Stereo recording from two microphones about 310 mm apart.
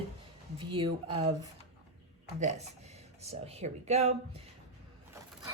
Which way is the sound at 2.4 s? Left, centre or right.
Right.